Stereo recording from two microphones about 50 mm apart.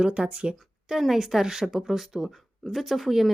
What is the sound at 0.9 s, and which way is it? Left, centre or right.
A woman's voice, centre.